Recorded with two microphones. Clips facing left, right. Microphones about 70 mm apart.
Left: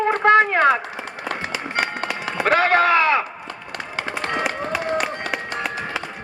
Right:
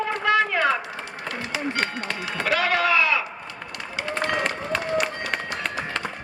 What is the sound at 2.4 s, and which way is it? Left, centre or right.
Speech, left.